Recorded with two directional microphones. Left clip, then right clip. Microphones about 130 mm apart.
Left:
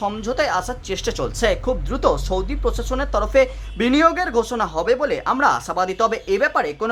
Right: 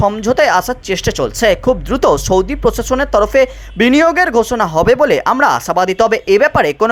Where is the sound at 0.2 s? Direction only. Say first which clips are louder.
Right 9 dB; 50° right (ahead or behind).